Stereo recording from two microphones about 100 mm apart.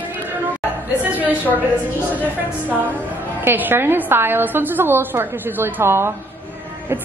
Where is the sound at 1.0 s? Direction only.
15° right (ahead or behind).